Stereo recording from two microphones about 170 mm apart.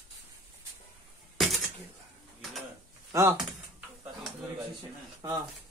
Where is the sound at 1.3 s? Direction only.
Centre (ahead or behind).